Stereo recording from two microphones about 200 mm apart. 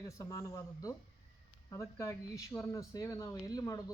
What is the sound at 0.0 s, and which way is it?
A man's voice, 15° left (ahead or behind).